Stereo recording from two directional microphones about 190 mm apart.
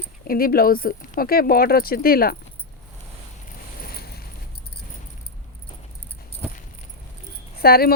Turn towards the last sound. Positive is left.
turn(degrees=55)  # may be behind; listen again after turning